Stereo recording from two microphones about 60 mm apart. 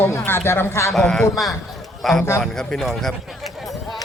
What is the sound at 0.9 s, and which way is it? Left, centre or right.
A man's voice, centre.